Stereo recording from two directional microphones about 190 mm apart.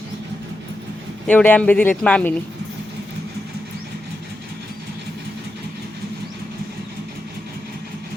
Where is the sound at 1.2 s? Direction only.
10° left (ahead or behind).